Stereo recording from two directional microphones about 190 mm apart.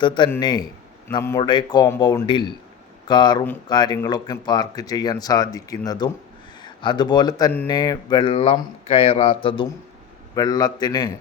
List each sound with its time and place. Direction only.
0.0 s a man's voice: 25° left (ahead or behind)